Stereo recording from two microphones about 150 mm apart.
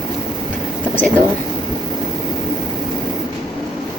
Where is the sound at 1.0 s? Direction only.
10° left (ahead or behind).